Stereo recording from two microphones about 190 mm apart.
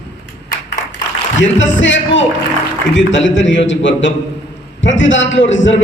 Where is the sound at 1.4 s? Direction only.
75° left (ahead or behind).